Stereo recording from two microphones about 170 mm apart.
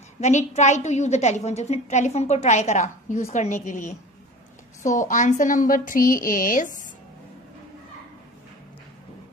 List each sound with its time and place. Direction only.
0.2 s a woman's voice: 45° left (ahead or behind)